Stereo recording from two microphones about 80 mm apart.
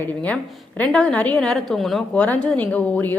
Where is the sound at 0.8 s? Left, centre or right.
Centre.